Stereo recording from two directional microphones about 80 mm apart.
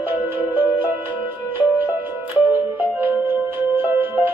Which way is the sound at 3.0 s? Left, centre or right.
Right.